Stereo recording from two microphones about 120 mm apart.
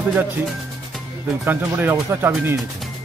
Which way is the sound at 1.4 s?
20° right (ahead or behind).